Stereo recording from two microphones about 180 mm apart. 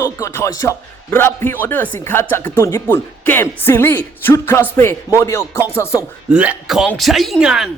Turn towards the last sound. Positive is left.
turn(degrees=0)  # may be behind; listen again after turning